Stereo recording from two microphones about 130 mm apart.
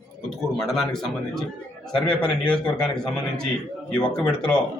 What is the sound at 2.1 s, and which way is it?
A man's voice, 5° left (ahead or behind).